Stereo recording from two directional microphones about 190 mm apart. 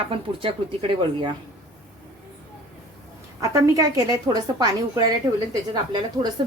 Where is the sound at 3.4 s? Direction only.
15° right (ahead or behind).